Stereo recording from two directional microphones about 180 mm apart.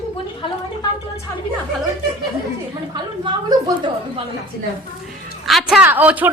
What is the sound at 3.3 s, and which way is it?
Speech, 25° right (ahead or behind).